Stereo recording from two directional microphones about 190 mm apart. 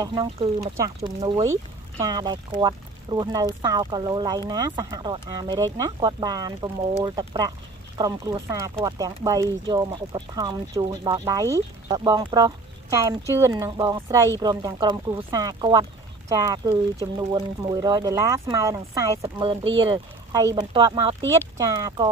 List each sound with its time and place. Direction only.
0.0 s speech: 20° right (ahead or behind)
19.3 s speech: 25° right (ahead or behind)